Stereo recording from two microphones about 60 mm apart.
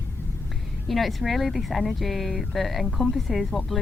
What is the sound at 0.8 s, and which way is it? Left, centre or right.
Speech, centre.